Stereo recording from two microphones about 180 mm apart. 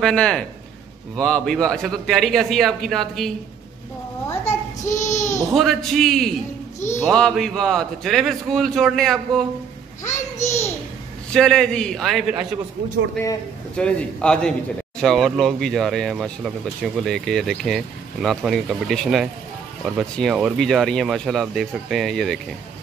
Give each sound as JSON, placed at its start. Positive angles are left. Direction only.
{"t": 0.0, "sound": "speech", "side_deg": 5}
{"t": 4.8, "sound": "a sound", "side_deg": 40}
{"t": 5.5, "sound": "speech", "side_deg": 0}
{"t": 11.3, "sound": "speech", "side_deg": 5}